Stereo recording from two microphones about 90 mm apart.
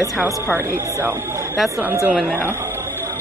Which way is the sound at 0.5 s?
25° right (ahead or behind).